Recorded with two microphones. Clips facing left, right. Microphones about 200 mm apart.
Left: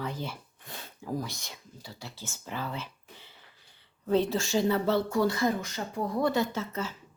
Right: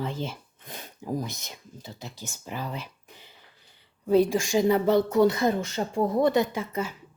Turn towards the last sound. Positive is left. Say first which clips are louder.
# right 3 dB
turn(degrees=-15)  # may be behind; listen again after turning